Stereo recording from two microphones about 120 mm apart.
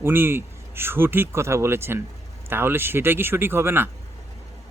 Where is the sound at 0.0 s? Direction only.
20° right (ahead or behind).